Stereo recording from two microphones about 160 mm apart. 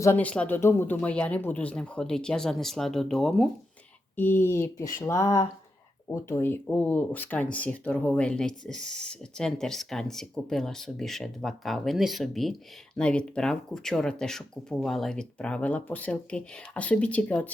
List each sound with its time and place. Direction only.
0.0 s speech: 10° left (ahead or behind)
4.1 s speech: 10° left (ahead or behind)